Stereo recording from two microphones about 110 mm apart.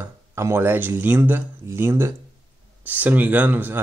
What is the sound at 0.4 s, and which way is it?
Speech, 25° right (ahead or behind).